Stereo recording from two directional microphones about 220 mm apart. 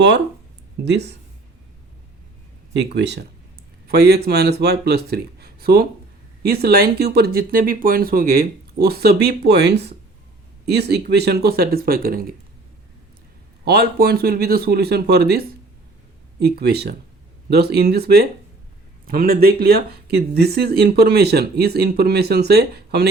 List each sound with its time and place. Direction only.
0.9 s speech: 50° right (ahead or behind)
2.7 s speech: 50° right (ahead or behind)
13.7 s speech: 45° right (ahead or behind)